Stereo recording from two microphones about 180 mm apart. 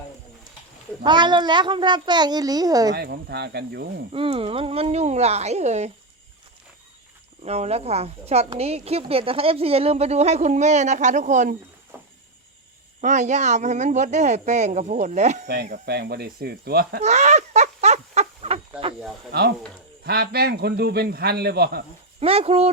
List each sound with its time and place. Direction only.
1.0 s a child's voice: 25° right (ahead or behind)
2.9 s a man's voice: 65° right (ahead or behind)
4.1 s a woman's voice: 30° right (ahead or behind)
7.4 s a woman's voice: 35° right (ahead or behind)
13.0 s a woman's voice: 40° right (ahead or behind)
15.7 s a man's voice: 65° right (ahead or behind)
17.0 s fowl: 40° right (ahead or behind)
20.1 s a man's voice: 60° right (ahead or behind)
22.2 s a woman's voice: 30° right (ahead or behind)